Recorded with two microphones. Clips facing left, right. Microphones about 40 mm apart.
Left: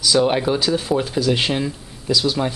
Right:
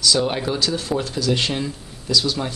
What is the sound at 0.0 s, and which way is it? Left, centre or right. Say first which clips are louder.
Speech: left 3 dB; centre.